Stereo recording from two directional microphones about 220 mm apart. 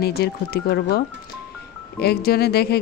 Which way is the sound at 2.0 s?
45° left (ahead or behind).